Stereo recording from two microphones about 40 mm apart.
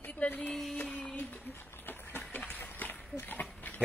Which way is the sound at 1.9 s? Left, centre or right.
Left.